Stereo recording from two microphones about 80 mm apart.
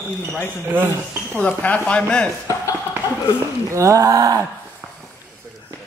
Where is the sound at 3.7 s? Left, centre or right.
Right.